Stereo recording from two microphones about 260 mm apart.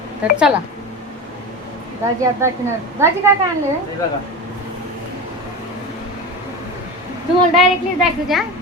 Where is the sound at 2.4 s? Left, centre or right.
Centre.